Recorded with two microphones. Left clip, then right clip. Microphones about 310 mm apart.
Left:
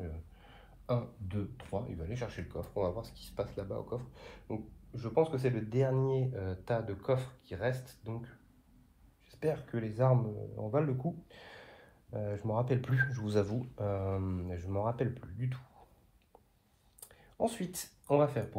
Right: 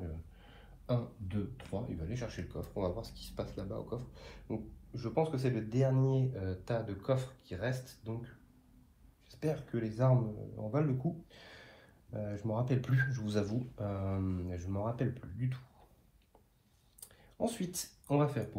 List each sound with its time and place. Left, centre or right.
0.8 s speech: centre
9.4 s speech: left
11.2 s speech: left
17.4 s speech: left